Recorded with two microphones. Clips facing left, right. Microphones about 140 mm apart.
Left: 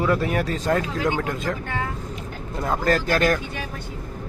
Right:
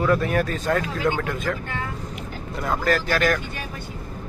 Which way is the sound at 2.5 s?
25° left (ahead or behind).